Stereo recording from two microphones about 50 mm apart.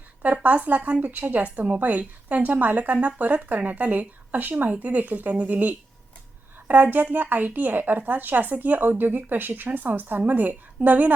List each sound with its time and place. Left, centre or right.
0.4 s a woman's voice: right